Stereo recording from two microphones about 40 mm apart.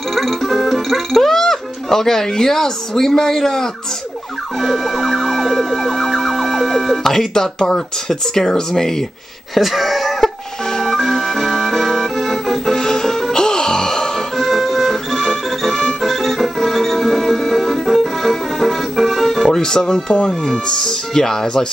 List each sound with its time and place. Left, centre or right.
0.1 s speech: centre
4.6 s emergency vehicle: centre
9.6 s a sound: centre
10.8 s music: centre
12.7 s music: centre
14.4 s music: centre
19.4 s speech: centre